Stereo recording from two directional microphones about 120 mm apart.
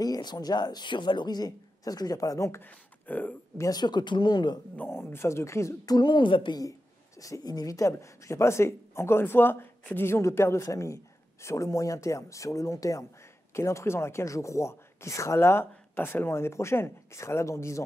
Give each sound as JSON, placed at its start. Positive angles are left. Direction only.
{"t": 0.0, "sound": "a woman's voice", "side_deg": 35}
{"t": 2.6, "sound": "speech", "side_deg": 15}
{"t": 3.6, "sound": "a woman's voice", "side_deg": 35}
{"t": 4.7, "sound": "speech", "side_deg": 20}